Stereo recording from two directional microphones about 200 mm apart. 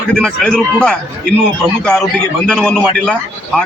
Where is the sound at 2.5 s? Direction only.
5° left (ahead or behind).